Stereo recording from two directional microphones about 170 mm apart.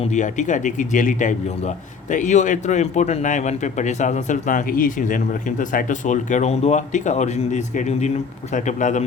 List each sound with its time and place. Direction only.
0.0 s speech: 45° left (ahead or behind)